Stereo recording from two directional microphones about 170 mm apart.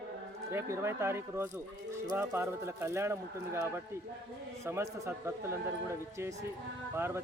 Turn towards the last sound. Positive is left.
turn(degrees=-15)  # may be behind; listen again after turning